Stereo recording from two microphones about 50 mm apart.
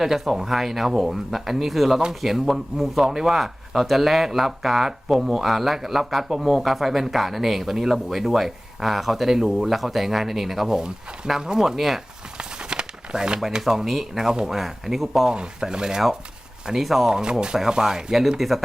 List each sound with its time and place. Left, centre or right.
0.0 s speech: centre
12.4 s crumpling: centre
13.4 s speech: centre
15.3 s speech: centre
17.1 s speech: centre